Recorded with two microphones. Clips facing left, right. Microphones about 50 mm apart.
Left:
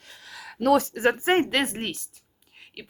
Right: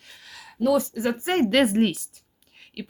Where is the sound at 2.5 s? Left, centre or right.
Centre.